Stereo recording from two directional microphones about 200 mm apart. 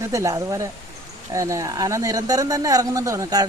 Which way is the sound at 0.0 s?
15° right (ahead or behind).